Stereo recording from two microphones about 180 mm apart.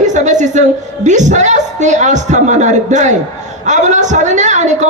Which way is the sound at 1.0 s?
40° right (ahead or behind).